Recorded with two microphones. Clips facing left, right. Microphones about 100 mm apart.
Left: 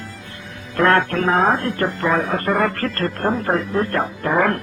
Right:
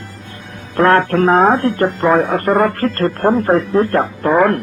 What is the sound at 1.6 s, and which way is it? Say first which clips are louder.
Speech: right 6 dB; 30° right (ahead or behind).